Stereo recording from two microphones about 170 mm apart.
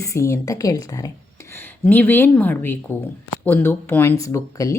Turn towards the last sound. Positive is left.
turn(degrees=20)  # may be behind; listen again after turning